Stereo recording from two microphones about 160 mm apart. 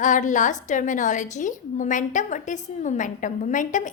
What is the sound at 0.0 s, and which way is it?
A woman's voice, 50° left (ahead or behind).